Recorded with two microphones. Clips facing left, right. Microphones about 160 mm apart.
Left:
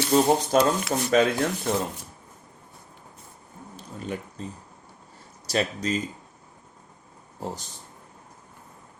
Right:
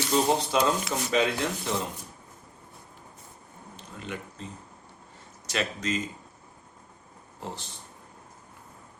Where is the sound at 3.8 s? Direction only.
35° left (ahead or behind).